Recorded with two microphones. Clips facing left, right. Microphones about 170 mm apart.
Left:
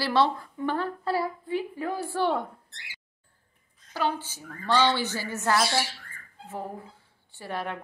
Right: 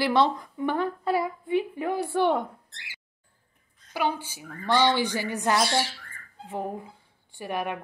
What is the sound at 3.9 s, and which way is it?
A woman's voice, 15° right (ahead or behind).